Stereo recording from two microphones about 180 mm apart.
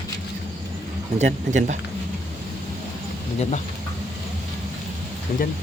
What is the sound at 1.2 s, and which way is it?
Speech, 40° right (ahead or behind).